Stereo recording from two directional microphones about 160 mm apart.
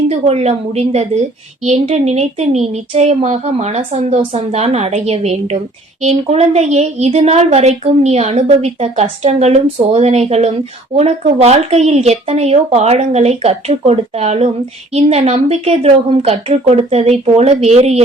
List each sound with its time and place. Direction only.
0.1 s a woman's voice: 40° right (ahead or behind)